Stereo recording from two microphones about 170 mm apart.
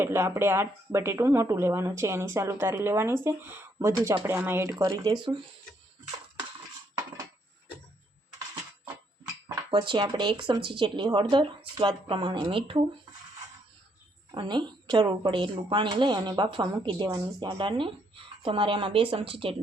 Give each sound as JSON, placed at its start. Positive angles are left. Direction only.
{"t": 0.0, "sound": "speech", "side_deg": -15}
{"t": 9.6, "sound": "a woman's voice", "side_deg": -30}
{"t": 14.3, "sound": "a woman's voice", "side_deg": -25}